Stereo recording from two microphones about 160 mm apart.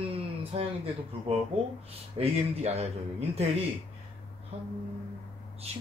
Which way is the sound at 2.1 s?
40° right (ahead or behind).